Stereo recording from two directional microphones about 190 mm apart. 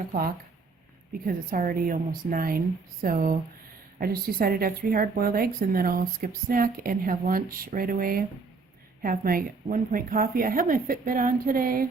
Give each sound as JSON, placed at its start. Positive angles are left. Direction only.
{"t": 1.2, "sound": "speech", "side_deg": -50}